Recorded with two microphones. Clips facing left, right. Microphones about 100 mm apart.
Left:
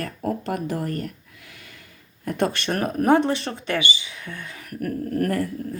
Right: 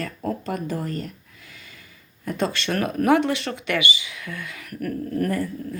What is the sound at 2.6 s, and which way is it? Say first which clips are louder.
Speech: even; 35° left (ahead or behind).